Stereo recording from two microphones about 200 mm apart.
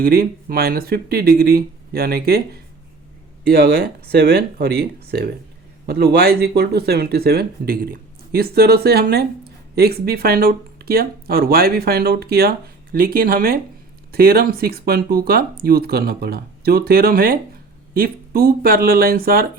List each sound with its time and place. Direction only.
0.0 s speech: 50° right (ahead or behind)